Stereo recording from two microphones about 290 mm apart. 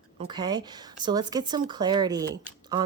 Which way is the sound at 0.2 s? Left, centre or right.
Centre.